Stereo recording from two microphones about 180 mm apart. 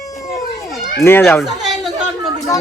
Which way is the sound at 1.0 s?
15° left (ahead or behind).